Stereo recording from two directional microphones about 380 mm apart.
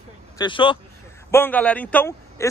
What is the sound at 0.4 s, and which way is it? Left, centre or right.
A man's voice, centre.